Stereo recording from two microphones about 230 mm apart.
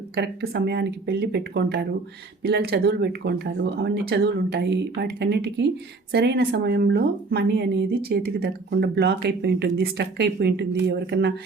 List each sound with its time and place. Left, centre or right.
0.2 s speech: right